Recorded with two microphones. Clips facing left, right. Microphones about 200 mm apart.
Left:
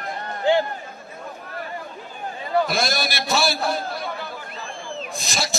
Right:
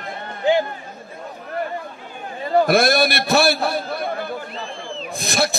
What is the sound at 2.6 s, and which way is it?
A man's voice, 60° right (ahead or behind).